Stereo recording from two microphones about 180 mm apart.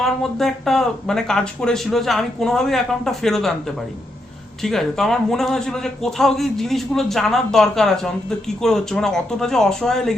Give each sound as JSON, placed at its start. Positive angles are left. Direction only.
{"t": 0.0, "sound": "speech", "side_deg": 0}
{"t": 4.6, "sound": "speech", "side_deg": 0}